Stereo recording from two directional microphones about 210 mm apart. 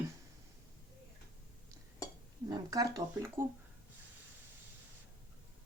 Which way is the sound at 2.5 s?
20° right (ahead or behind).